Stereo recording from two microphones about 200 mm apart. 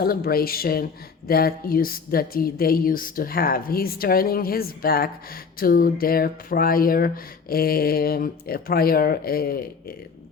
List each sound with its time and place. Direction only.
0.0 s speech: 50° left (ahead or behind)